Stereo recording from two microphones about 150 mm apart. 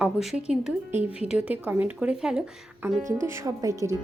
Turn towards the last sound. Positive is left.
turn(degrees=-20)  # may be behind; listen again after turning